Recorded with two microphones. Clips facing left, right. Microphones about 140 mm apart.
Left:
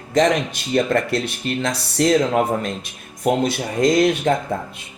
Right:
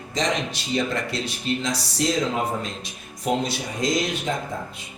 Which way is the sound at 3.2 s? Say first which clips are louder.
Left 5 dB; 55° left (ahead or behind).